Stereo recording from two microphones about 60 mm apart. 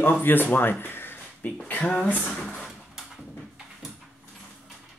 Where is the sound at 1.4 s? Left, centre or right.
Left.